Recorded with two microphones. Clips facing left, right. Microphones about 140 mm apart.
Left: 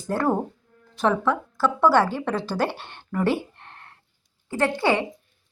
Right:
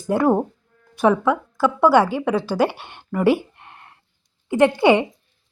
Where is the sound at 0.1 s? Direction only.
15° right (ahead or behind).